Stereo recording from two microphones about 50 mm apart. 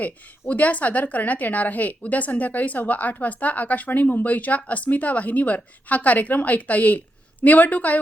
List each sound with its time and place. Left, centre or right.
0.0 s a woman's voice: left